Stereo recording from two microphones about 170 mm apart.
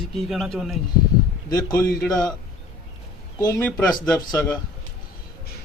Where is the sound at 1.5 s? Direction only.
20° left (ahead or behind).